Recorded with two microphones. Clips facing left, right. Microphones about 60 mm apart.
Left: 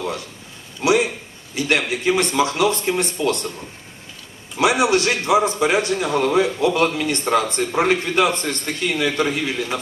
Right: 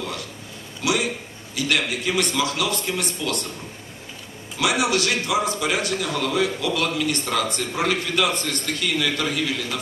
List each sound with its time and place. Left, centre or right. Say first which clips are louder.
0.8 s a man's voice: left 6 dB; left
4.6 s a man's voice: left 5 dB; left